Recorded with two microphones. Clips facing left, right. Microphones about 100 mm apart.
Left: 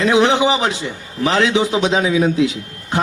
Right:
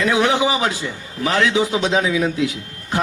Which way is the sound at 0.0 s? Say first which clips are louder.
Left 3 dB; 20° left (ahead or behind).